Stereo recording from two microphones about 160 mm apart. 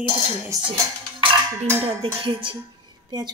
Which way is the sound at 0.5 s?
20° right (ahead or behind).